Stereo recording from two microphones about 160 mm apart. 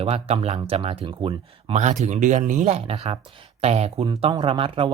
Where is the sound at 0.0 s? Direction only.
35° right (ahead or behind).